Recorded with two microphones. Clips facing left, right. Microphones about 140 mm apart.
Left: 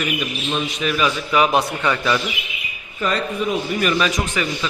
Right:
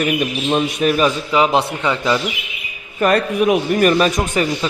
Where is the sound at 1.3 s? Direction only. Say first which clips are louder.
Left 1 dB; 25° right (ahead or behind).